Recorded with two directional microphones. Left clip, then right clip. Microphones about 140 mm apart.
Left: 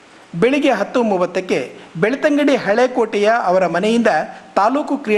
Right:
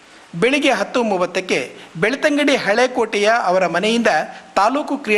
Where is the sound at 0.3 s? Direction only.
10° left (ahead or behind).